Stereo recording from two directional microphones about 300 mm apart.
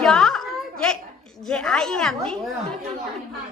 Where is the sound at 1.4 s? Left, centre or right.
Centre.